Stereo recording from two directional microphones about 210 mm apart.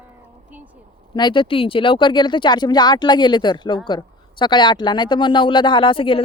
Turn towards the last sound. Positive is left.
turn(degrees=25)  # may be behind; listen again after turning